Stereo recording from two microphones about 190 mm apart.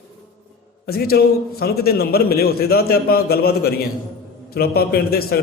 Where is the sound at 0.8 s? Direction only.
55° left (ahead or behind).